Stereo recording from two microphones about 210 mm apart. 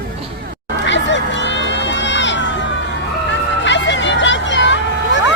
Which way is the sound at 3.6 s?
60° left (ahead or behind).